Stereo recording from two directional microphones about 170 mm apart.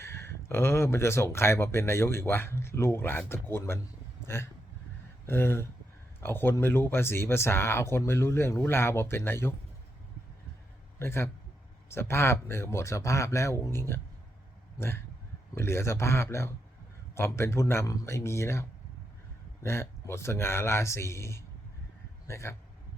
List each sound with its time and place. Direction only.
0.0 s speech: 15° left (ahead or behind)
5.2 s speech: 15° left (ahead or behind)
11.0 s speech: 15° left (ahead or behind)
19.6 s speech: 15° left (ahead or behind)